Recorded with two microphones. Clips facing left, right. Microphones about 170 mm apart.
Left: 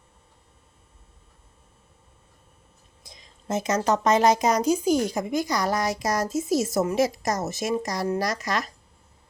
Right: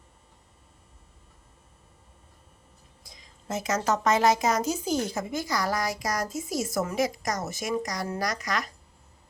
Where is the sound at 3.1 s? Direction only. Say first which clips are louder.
Left 5 dB; 20° left (ahead or behind).